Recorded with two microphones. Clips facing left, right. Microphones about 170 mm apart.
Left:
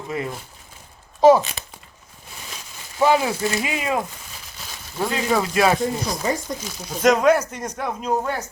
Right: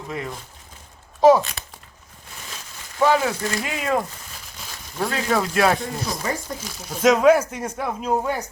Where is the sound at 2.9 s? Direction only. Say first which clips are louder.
Left 1 dB; 10° left (ahead or behind).